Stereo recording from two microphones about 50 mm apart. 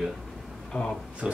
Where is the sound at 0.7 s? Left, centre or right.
Left.